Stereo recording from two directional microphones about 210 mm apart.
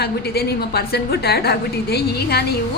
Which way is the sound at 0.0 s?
50° left (ahead or behind).